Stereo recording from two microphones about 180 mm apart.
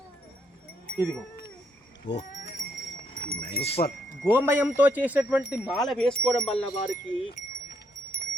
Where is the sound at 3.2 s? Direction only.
90° left.